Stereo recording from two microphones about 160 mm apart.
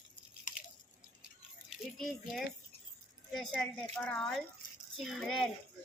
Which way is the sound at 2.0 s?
Centre (ahead or behind).